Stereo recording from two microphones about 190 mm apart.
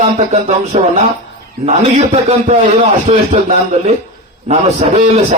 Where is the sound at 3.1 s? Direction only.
35° right (ahead or behind).